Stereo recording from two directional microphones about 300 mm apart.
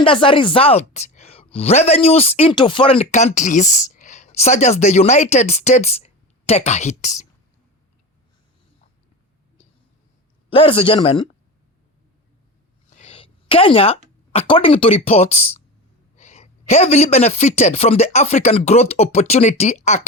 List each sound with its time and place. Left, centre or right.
0.0 s speech: centre
10.5 s speech: centre
12.9 s a sound: left
14.3 s speech: centre